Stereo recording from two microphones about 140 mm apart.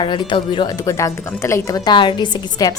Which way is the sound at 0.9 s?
20° left (ahead or behind).